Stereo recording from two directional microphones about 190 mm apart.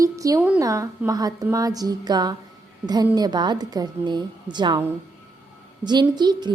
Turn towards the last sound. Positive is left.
turn(degrees=-20)  # may be behind; listen again after turning